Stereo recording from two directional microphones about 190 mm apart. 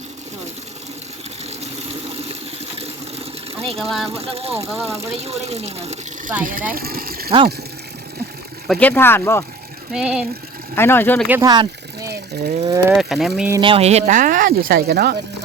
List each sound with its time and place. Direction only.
1.6 s a sound: 35° right (ahead or behind)
3.5 s a sound: 30° right (ahead or behind)
3.8 s speech: centre (ahead or behind)
4.1 s speech: 30° right (ahead or behind)
6.4 s speech: 45° right (ahead or behind)
6.7 s vehicle: 50° right (ahead or behind)
8.6 s speech: 5° left (ahead or behind)
9.9 s speech: 5° right (ahead or behind)
10.8 s speech: 10° left (ahead or behind)
11.3 s a sound: 15° right (ahead or behind)
12.9 s speech: centre (ahead or behind)
13.6 s speech: 30° right (ahead or behind); by 15.2 s 55° right (ahead or behind)